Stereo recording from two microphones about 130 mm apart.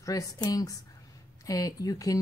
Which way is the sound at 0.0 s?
25° left (ahead or behind).